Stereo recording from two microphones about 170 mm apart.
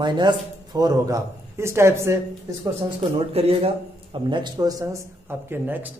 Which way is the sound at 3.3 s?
35° right (ahead or behind).